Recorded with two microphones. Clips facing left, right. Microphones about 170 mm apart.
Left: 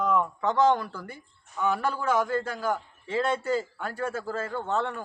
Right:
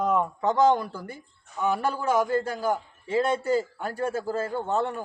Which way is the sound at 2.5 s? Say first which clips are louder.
Right 2 dB; 15° right (ahead or behind).